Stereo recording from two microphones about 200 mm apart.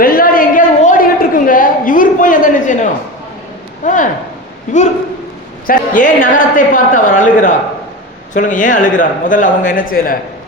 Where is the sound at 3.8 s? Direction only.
40° left (ahead or behind).